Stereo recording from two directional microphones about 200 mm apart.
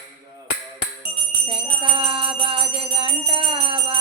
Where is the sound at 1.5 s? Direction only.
25° right (ahead or behind).